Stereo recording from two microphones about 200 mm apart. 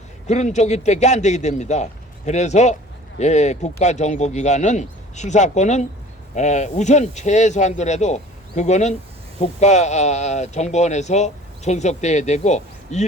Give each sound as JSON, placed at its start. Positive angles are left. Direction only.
{"t": 0.3, "sound": "speech", "side_deg": 35}